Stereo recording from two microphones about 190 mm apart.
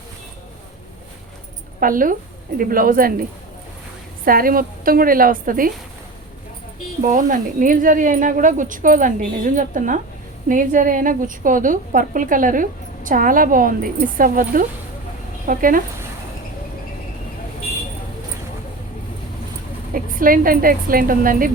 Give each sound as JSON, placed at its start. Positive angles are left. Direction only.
{"t": 1.8, "sound": "a woman's voice", "side_deg": -45}
{"t": 4.3, "sound": "a woman's voice", "side_deg": -50}
{"t": 7.0, "sound": "a woman's voice", "side_deg": -45}
{"t": 19.9, "sound": "a woman's voice", "side_deg": -45}